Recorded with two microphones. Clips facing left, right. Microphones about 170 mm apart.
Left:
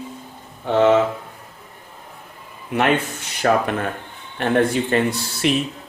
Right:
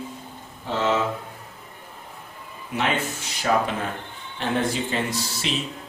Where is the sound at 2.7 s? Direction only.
60° left (ahead or behind).